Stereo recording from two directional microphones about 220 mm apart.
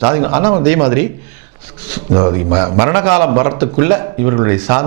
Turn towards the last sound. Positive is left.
turn(degrees=-10)  # may be behind; listen again after turning